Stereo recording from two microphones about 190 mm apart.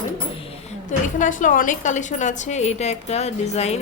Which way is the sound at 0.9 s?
40° left (ahead or behind).